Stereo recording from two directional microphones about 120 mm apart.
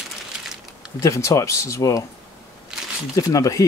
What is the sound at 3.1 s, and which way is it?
Speech, 30° left (ahead or behind).